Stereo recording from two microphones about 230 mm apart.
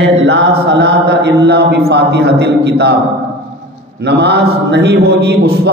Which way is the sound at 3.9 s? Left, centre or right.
Right.